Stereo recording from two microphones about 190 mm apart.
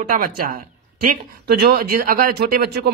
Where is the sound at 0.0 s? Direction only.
45° right (ahead or behind).